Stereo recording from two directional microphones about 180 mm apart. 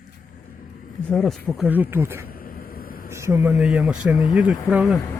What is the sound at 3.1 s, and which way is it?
Speech, 15° right (ahead or behind).